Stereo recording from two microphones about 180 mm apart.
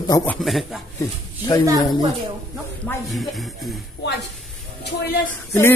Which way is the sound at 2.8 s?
Centre (ahead or behind).